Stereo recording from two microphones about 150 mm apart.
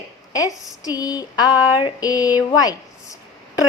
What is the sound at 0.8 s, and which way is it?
A woman's voice, 25° left (ahead or behind).